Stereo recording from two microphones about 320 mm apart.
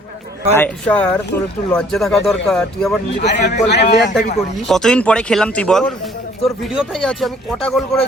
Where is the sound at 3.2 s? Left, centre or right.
Left.